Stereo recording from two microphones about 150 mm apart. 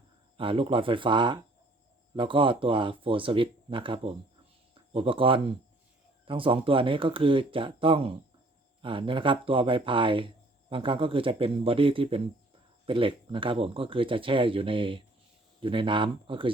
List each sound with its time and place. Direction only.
0.3 s speech: 35° right (ahead or behind)